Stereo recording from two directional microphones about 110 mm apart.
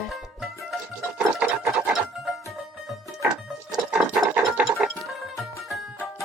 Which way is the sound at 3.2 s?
5° right (ahead or behind).